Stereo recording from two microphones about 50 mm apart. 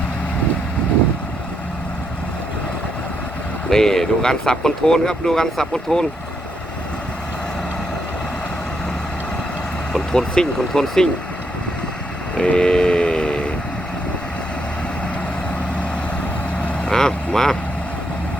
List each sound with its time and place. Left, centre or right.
3.7 s speech: centre
9.9 s speech: centre
12.4 s vehicle: centre
16.8 s vehicle: centre